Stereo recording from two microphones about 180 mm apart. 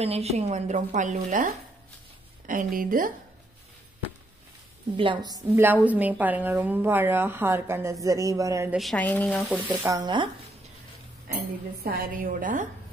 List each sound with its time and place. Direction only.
0.0 s a woman's voice: 35° right (ahead or behind); by 3.1 s 50° right (ahead or behind)
4.9 s a woman's voice: 25° right (ahead or behind)
5.6 s a woman's voice: 10° right (ahead or behind)
8.7 s speech: 5° left (ahead or behind)
9.8 s a woman's voice: 20° right (ahead or behind)
11.8 s a woman's voice: 55° right (ahead or behind)